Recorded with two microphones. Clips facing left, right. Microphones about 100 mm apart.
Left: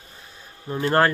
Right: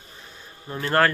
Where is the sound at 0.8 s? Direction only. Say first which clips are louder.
Left 1 dB; 20° left (ahead or behind).